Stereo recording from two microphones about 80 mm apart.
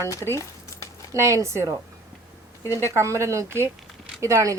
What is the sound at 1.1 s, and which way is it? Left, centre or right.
Speech, right.